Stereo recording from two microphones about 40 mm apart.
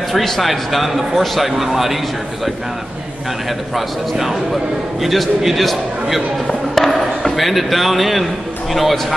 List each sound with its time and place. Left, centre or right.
0.1 s speech: centre
3.7 s speech: centre